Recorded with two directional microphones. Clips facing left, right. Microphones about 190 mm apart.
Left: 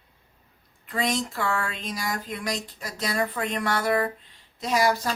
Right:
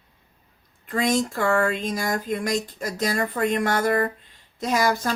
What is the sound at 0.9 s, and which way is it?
Speech, 45° right (ahead or behind).